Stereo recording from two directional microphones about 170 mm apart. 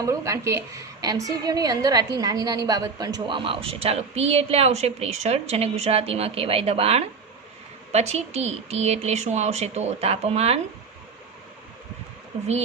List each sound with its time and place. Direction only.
0.0 s a woman's voice: 20° right (ahead or behind); by 10.6 s 35° right (ahead or behind)